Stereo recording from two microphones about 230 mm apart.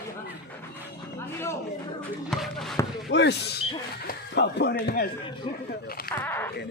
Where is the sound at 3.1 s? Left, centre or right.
Left.